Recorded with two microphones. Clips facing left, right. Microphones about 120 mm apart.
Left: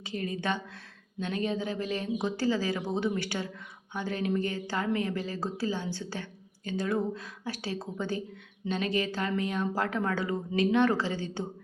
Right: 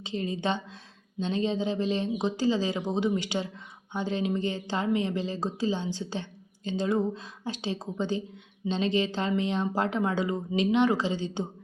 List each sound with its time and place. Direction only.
0.0 s speech: 25° right (ahead or behind)